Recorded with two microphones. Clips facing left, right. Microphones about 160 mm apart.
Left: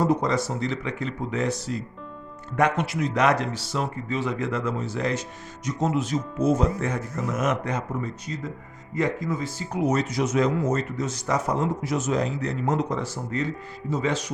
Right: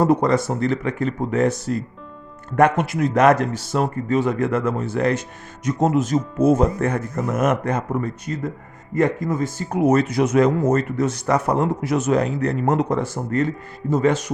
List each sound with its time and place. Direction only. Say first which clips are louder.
0.0 s speech: right 5 dB; 55° right (ahead or behind)